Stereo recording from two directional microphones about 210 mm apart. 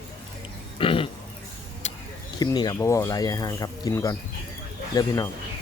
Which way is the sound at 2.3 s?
20° left (ahead or behind).